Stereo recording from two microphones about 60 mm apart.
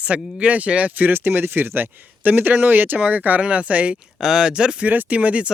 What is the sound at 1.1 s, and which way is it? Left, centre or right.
Speech, right.